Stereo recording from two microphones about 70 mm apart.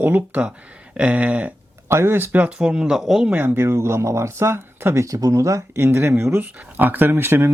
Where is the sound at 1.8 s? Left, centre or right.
Right.